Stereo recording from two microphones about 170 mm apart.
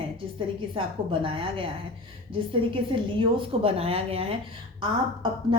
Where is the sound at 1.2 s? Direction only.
30° right (ahead or behind).